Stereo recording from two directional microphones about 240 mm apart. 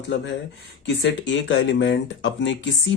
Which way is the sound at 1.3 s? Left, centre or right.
Left.